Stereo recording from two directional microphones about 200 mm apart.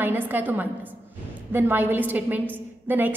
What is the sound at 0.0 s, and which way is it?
A woman's voice, 10° right (ahead or behind).